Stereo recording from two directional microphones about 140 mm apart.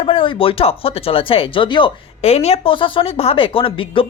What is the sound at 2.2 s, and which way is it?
Speech, 50° left (ahead or behind).